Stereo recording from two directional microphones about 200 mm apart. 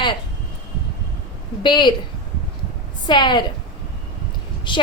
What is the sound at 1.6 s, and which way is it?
Speech, 25° left (ahead or behind).